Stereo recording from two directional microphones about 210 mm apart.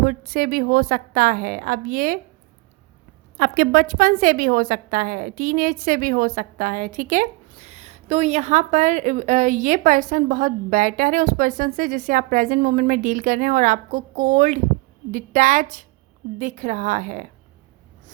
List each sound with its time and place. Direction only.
0.0 s a woman's voice: 40° right (ahead or behind)
3.3 s a woman's voice: 45° right (ahead or behind)